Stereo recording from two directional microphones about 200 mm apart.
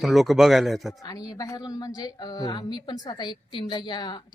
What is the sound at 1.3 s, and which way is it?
A woman's voice, 20° left (ahead or behind).